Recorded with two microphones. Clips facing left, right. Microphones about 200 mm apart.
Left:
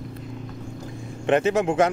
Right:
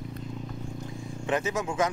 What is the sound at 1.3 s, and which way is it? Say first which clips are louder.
Speech: left 9 dB; 65° left (ahead or behind).